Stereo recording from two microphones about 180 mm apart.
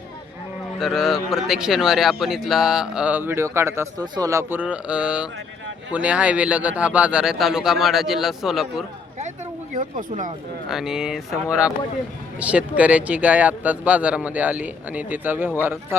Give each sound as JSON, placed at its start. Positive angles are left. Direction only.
{"t": 0.8, "sound": "speech", "side_deg": 0}
{"t": 9.7, "sound": "speech", "side_deg": -45}
{"t": 10.7, "sound": "speech", "side_deg": -5}
{"t": 12.4, "sound": "speech", "side_deg": -5}